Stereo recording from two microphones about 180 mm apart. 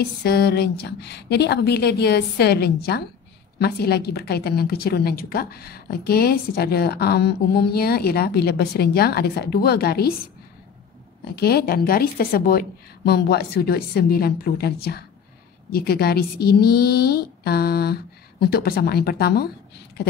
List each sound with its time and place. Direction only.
0.0 s a woman's voice: 65° left (ahead or behind)
11.3 s a woman's voice: 60° left (ahead or behind)